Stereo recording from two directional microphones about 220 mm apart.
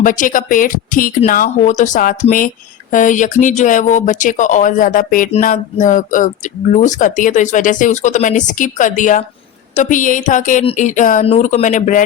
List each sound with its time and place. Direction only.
0.0 s speech: 35° left (ahead or behind)